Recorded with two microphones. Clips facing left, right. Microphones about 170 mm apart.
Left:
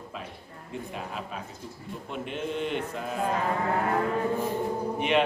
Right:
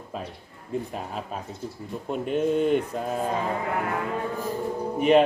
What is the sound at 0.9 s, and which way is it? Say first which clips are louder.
Mantra: right 3 dB; 40° right (ahead or behind).